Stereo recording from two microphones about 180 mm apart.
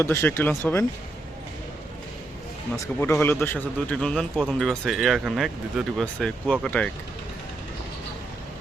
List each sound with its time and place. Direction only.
0.0 s a man's voice: 15° left (ahead or behind)
2.7 s a man's voice: 15° left (ahead or behind)